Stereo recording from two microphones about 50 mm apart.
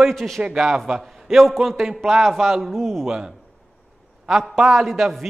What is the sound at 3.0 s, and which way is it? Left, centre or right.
Speech, centre.